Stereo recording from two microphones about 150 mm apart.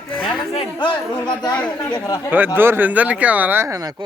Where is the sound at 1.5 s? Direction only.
10° left (ahead or behind).